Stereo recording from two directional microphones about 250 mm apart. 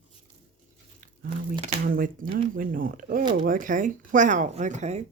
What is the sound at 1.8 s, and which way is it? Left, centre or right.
Speech, right.